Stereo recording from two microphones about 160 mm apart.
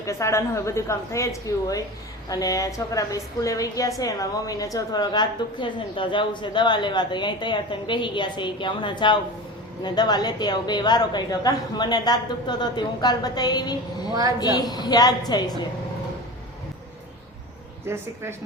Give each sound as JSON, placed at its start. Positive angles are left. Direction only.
{"t": 0.0, "sound": "a woman's voice", "side_deg": 20}
{"t": 14.1, "sound": "a woman's voice", "side_deg": -20}
{"t": 14.3, "sound": "a woman's voice", "side_deg": 25}
{"t": 17.8, "sound": "speech", "side_deg": -15}